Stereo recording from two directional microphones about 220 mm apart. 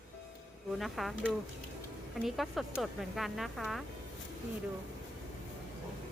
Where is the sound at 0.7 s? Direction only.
Centre (ahead or behind).